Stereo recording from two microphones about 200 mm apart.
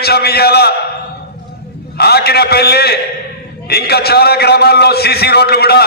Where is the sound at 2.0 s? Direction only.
55° left (ahead or behind).